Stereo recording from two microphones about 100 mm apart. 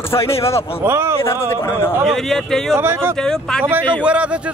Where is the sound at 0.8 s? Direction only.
25° right (ahead or behind).